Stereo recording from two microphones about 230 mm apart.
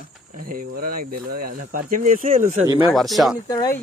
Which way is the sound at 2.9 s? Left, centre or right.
Centre.